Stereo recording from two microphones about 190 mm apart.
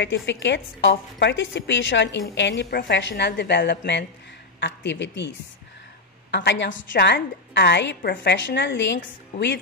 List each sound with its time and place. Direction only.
0.0 s a woman's voice: 70° left (ahead or behind)
6.3 s a woman's voice: 65° left (ahead or behind)